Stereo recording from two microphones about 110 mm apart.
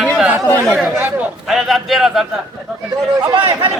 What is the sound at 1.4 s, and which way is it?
Speech, centre (ahead or behind).